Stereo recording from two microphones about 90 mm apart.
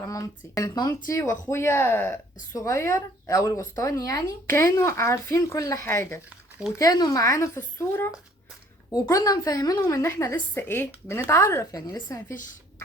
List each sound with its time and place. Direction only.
0.0 s a woman's voice: 40° left (ahead or behind)
6.7 s speech: 40° left (ahead or behind); by 8.1 s 25° left (ahead or behind)
9.0 s a woman's voice: 40° left (ahead or behind)